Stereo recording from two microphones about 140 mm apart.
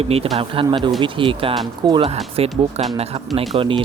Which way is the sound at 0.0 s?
45° right (ahead or behind).